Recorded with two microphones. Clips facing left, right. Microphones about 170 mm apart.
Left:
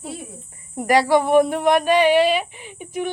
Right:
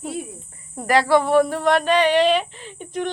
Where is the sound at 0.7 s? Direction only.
15° left (ahead or behind).